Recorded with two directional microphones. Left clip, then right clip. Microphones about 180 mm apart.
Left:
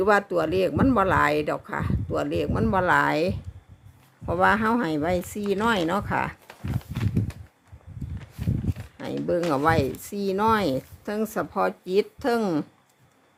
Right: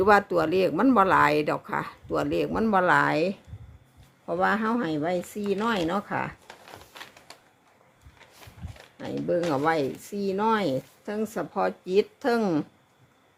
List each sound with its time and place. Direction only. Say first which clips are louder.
0.0 s speech: right 1 dB; centre (ahead or behind)
6.5 s a sound: left 6 dB; 35° left (ahead or behind)
9.5 s speech: left 2 dB; 15° left (ahead or behind)